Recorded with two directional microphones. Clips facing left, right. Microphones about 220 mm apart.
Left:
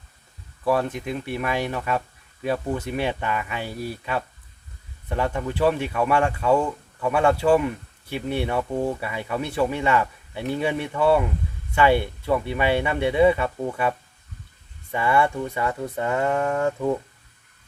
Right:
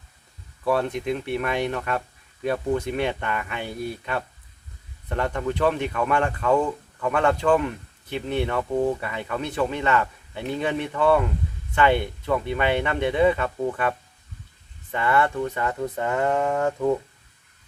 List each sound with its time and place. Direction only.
0.6 s speech: 5° left (ahead or behind)
14.9 s speech: 10° left (ahead or behind)